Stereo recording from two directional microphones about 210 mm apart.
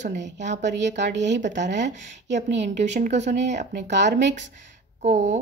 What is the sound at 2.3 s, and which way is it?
Speech, 35° right (ahead or behind).